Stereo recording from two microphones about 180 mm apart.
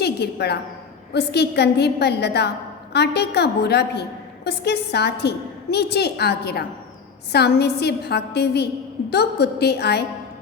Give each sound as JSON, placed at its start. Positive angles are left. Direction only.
{"t": 0.0, "sound": "a woman's voice", "side_deg": 65}